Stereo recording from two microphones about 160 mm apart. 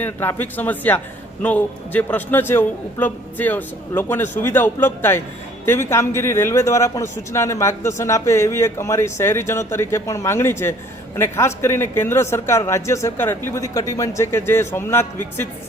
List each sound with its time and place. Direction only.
0.0 s a man's voice: 15° left (ahead or behind)